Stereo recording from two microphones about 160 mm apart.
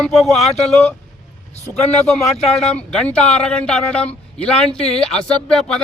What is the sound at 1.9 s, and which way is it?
Speech, 40° left (ahead or behind).